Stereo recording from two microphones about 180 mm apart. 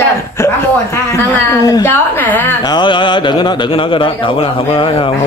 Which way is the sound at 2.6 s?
25° left (ahead or behind).